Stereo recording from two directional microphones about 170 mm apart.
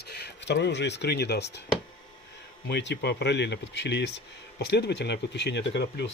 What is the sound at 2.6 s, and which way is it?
Speech, 90° left.